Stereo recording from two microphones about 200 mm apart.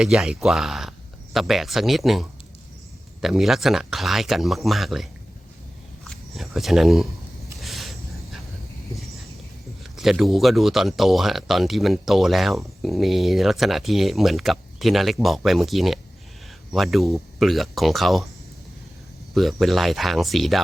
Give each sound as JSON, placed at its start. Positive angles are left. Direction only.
{"t": 0.0, "sound": "speech", "side_deg": -5}
{"t": 6.1, "sound": "a sound", "side_deg": 0}
{"t": 9.9, "sound": "speech", "side_deg": 0}
{"t": 19.3, "sound": "speech", "side_deg": 0}